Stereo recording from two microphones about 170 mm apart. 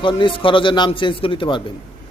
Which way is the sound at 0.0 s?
30° left (ahead or behind).